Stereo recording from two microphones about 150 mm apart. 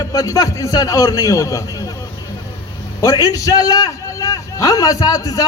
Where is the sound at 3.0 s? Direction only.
25° left (ahead or behind).